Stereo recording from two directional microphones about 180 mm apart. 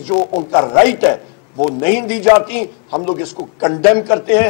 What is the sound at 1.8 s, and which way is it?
Speech, 15° left (ahead or behind).